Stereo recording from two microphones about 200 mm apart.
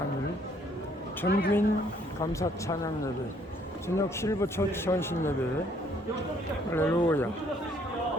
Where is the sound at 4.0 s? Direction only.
15° left (ahead or behind).